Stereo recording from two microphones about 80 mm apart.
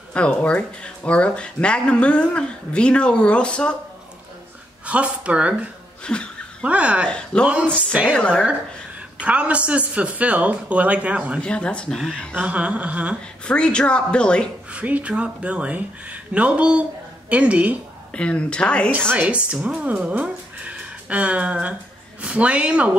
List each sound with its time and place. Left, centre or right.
0.1 s speech: centre
4.8 s speech: centre
6.1 s speech: centre
6.6 s speech: centre
7.1 s speech: centre
7.7 s speech: centre
8.1 s speech: centre
9.2 s speech: centre
11.4 s speech: centre
12.4 s speech: centre
13.5 s speech: centre
14.7 s speech: centre
18.1 s speech: centre
19.1 s speech: centre